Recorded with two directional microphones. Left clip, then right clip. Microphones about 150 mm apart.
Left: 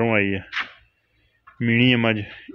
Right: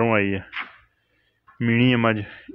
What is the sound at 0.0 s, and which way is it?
Speech, 20° left (ahead or behind).